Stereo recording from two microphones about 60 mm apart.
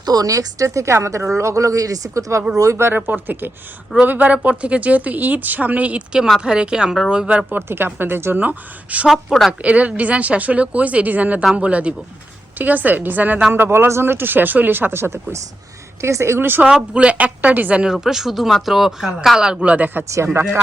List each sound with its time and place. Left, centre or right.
0.1 s speech: right
2.7 s a woman's voice: right
6.4 s a woman's voice: centre
7.9 s speech: right
13.7 s a woman's voice: right
16.6 s speech: centre
17.8 s speech: centre
19.6 s speech: right
20.1 s speech: right